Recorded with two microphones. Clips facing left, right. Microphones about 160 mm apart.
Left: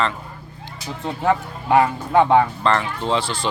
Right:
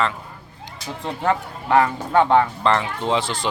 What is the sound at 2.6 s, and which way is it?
Speech, 15° right (ahead or behind).